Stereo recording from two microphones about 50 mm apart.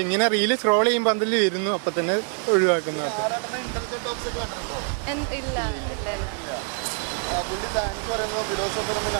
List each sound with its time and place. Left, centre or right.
0.0 s speech: right
5.0 s speech: right
7.3 s speech: right